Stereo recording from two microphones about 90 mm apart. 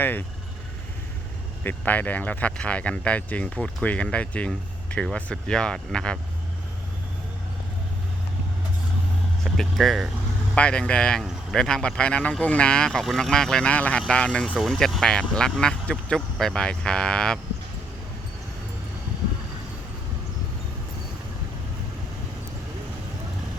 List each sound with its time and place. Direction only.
0.0 s speech: 20° left (ahead or behind)
1.6 s speech: 20° left (ahead or behind)
9.4 s speech: 5° left (ahead or behind)
10.5 s speech: 10° left (ahead or behind)
14.5 s speech: centre (ahead or behind)